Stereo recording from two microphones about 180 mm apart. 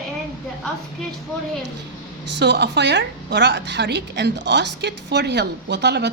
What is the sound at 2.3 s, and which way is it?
A woman's voice, 70° right (ahead or behind).